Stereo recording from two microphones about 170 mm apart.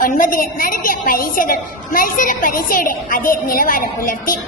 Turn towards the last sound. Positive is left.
turn(degrees=55)  # may be behind; listen again after turning